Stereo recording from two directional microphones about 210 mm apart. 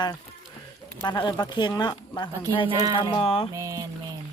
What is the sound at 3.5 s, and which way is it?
Speech, 15° right (ahead or behind).